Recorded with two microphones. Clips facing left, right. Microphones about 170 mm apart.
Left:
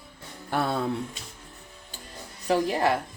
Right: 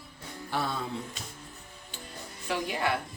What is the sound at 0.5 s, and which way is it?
Music, 60° left (ahead or behind).